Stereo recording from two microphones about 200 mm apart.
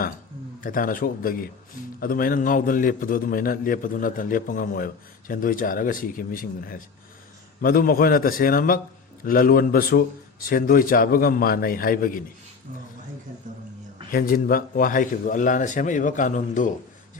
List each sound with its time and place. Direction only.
0.6 s a man's voice: 45° left (ahead or behind)
14.1 s a man's voice: 45° left (ahead or behind)